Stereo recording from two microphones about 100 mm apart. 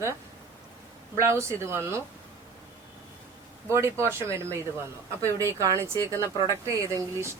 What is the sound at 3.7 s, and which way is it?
Speech, 25° right (ahead or behind).